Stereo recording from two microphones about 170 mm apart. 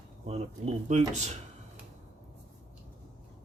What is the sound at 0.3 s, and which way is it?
Speech, 40° right (ahead or behind).